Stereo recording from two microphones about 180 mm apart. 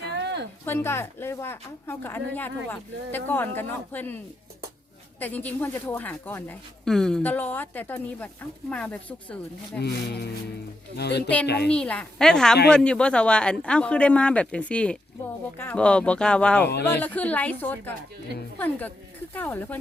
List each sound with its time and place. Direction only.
0.2 s a sound: 75° right (ahead or behind)
0.6 s speech: 15° left (ahead or behind)
5.2 s speech: 10° left (ahead or behind)
9.7 s a woman's voice: 65° left (ahead or behind)
11.7 s a man's voice: 5° left (ahead or behind)